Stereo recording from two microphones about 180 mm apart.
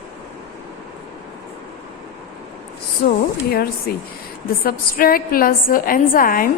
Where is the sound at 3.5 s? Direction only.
60° left (ahead or behind).